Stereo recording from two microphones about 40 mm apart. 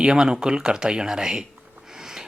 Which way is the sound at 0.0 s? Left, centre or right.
Centre.